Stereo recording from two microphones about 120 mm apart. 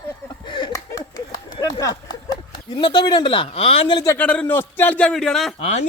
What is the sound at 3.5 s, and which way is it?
Speech, 55° left (ahead or behind).